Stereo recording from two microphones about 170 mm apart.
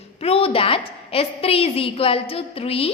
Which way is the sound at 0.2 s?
35° left (ahead or behind).